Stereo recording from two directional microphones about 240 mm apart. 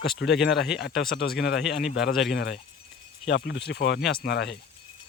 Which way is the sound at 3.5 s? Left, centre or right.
Left.